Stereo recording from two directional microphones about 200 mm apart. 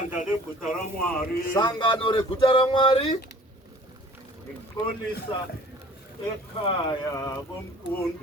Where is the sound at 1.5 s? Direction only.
20° left (ahead or behind).